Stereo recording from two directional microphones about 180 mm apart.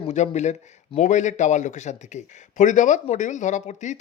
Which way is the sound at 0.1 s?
40° left (ahead or behind).